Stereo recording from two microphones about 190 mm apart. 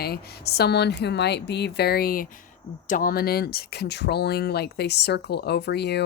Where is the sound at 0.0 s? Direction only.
55° left (ahead or behind).